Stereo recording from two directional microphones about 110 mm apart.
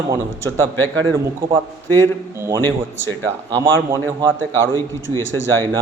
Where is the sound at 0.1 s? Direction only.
30° right (ahead or behind).